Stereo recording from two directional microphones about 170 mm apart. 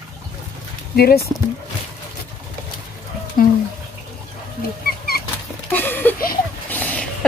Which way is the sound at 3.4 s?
55° left (ahead or behind).